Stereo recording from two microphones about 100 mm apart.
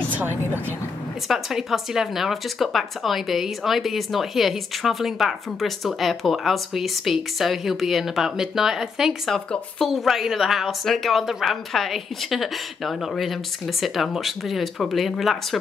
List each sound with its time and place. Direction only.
0.1 s speech: 20° right (ahead or behind)
1.3 s speech: 5° right (ahead or behind)